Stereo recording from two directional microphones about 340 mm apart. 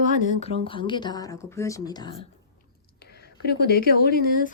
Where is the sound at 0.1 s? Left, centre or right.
Centre.